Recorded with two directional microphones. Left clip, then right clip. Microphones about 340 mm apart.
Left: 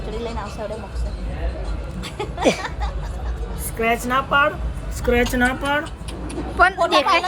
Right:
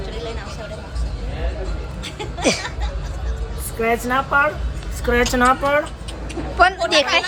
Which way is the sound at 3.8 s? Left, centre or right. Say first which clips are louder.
Right 1 dB; centre.